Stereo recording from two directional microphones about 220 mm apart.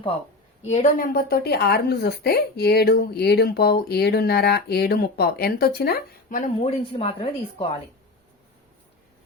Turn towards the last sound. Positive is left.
turn(degrees=25)  # may be behind; listen again after turning